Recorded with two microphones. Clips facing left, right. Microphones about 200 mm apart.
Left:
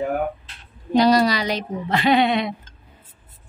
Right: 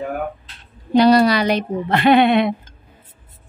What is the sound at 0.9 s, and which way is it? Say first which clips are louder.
A woman's voice: right 4 dB; 60° right (ahead or behind).